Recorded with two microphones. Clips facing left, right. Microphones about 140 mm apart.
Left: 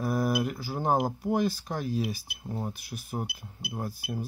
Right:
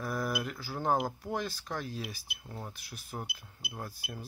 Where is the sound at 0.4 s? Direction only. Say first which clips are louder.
Left 6 dB; 15° left (ahead or behind).